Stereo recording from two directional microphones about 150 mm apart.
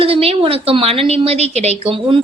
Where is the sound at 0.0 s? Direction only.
40° right (ahead or behind).